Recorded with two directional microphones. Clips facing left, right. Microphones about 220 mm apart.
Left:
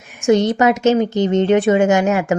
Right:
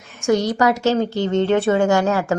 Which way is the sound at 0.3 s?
20° left (ahead or behind).